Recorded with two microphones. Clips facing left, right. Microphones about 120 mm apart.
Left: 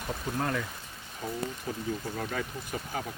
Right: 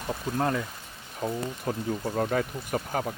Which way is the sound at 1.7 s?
45° right (ahead or behind).